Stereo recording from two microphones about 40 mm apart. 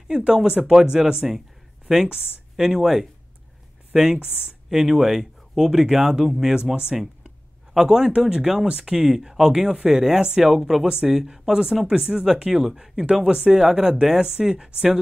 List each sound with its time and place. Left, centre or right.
0.1 s speech: right
0.6 s speech: centre
12.6 s speech: centre